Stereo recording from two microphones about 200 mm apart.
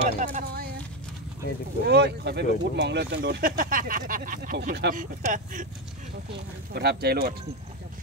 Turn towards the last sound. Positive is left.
turn(degrees=-55)  # may be behind; listen again after turning